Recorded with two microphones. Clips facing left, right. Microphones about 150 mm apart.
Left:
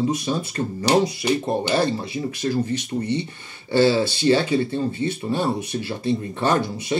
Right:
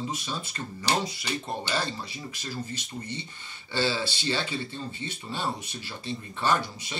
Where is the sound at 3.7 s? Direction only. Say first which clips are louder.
Left 11 dB; 45° left (ahead or behind).